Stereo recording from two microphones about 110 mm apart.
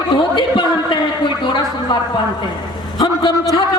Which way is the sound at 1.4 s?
45° left (ahead or behind).